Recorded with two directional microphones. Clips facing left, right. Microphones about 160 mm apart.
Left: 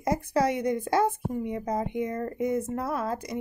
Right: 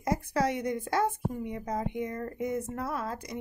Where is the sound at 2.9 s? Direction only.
15° left (ahead or behind).